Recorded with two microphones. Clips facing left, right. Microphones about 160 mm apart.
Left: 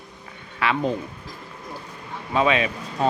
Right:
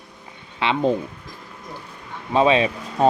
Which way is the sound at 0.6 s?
25° right (ahead or behind).